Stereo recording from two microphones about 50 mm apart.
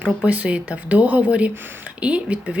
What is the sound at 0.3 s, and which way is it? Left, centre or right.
Speech, right.